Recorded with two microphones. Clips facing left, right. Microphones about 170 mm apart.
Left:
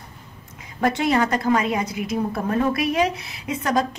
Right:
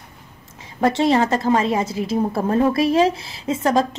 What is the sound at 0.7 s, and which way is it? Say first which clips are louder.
Speech: right 3 dB; 25° right (ahead or behind).